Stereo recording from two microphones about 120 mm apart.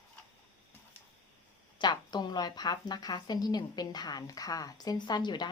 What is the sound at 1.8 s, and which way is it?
A woman's voice, 35° left (ahead or behind).